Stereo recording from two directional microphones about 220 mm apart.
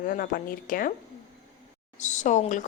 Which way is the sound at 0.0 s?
40° left (ahead or behind).